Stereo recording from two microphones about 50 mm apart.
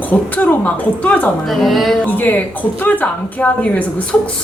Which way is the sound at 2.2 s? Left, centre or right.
Left.